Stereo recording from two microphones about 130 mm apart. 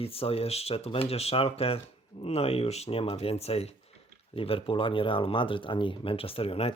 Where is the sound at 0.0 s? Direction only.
50° left (ahead or behind).